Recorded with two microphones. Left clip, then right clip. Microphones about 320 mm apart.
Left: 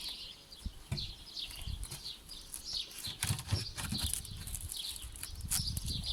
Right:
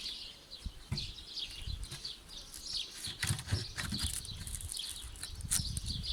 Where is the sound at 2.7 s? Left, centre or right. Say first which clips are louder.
Even; centre.